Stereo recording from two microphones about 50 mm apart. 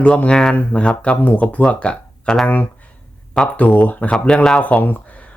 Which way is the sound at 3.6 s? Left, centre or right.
Left.